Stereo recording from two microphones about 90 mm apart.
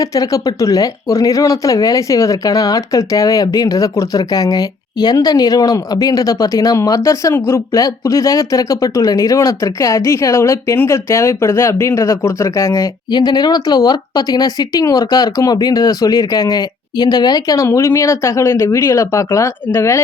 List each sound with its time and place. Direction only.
0.0 s speech: 40° left (ahead or behind)
13.1 s speech: 55° left (ahead or behind)
17.6 s speech: 30° left (ahead or behind)